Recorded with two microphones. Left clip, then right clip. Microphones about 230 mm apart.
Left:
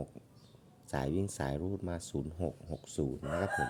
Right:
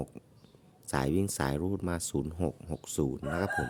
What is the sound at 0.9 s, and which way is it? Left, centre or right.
Speech, right.